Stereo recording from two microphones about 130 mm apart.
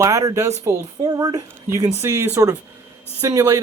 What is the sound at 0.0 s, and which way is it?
Speech, 25° right (ahead or behind).